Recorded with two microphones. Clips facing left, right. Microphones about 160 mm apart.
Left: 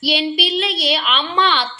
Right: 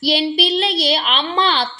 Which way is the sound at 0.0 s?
35° right (ahead or behind).